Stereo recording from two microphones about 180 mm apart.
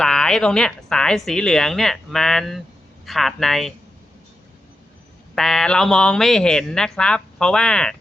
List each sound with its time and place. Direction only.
0.0 s speech: 5° left (ahead or behind)
5.3 s speech: centre (ahead or behind)